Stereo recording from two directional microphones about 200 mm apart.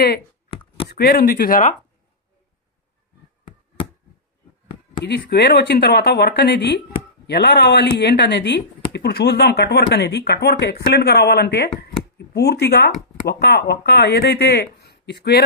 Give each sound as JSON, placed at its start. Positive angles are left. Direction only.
{"t": 0.5, "sound": "a sound", "side_deg": 25}
{"t": 0.9, "sound": "speech", "side_deg": 55}
{"t": 5.0, "sound": "speech", "side_deg": 55}